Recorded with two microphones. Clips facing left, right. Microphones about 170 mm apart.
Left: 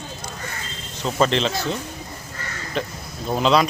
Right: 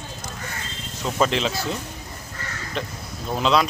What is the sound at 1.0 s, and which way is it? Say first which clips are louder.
Speech: left 2 dB; 5° right (ahead or behind).